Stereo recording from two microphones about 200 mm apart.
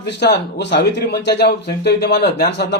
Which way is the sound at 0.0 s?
55° left (ahead or behind).